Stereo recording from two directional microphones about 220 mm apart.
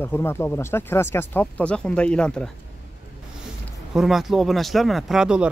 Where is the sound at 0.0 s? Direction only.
10° left (ahead or behind).